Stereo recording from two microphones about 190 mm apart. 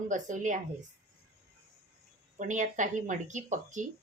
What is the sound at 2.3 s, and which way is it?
A woman's voice, 40° right (ahead or behind).